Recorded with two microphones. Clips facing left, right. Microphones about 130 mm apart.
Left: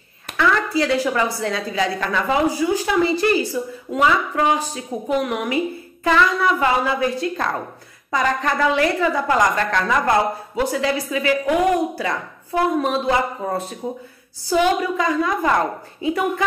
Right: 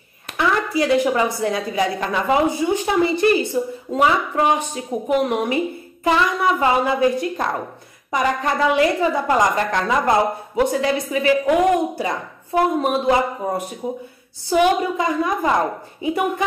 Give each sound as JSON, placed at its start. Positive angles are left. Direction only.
{"t": 0.4, "sound": "a woman's voice", "side_deg": -20}